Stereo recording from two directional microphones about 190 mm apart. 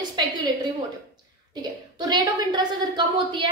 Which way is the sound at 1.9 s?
25° right (ahead or behind).